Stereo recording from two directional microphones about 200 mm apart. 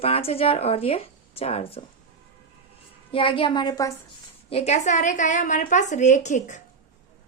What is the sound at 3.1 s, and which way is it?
Speech, 25° left (ahead or behind).